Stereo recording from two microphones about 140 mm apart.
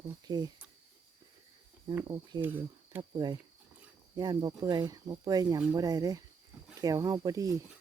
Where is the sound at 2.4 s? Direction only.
15° right (ahead or behind).